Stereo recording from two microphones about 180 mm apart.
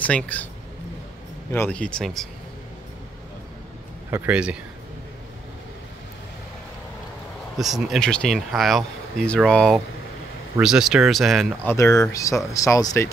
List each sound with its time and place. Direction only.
0.0 s speech: 10° left (ahead or behind)
1.5 s speech: 10° left (ahead or behind)
4.1 s speech: 5° right (ahead or behind)
7.5 s speech: centre (ahead or behind)
11.7 s speech: 15° left (ahead or behind)